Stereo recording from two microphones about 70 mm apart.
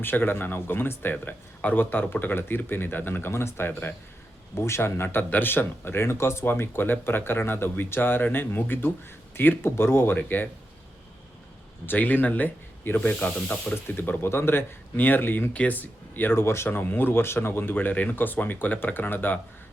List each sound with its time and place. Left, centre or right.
0.0 s speech: left
11.9 s speech: left